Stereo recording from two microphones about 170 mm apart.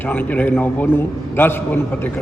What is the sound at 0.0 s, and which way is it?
A man's voice, 10° left (ahead or behind).